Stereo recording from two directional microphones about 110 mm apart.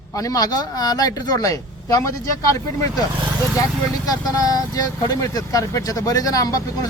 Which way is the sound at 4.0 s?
35° left (ahead or behind).